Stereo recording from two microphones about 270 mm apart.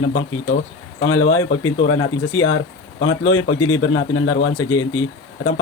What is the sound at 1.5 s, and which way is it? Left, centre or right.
Speech, left.